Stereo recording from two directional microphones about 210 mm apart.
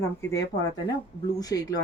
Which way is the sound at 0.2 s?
15° left (ahead or behind).